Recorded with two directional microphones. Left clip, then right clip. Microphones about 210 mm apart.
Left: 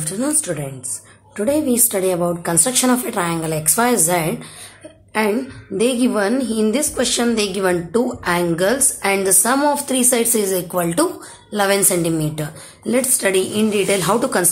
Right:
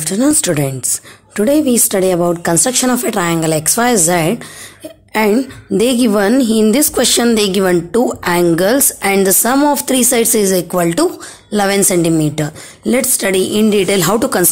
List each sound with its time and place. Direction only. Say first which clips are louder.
0.0 s a woman's voice: right 8 dB; 35° right (ahead or behind)